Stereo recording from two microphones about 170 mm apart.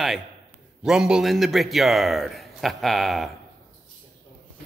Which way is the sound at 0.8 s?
5° right (ahead or behind).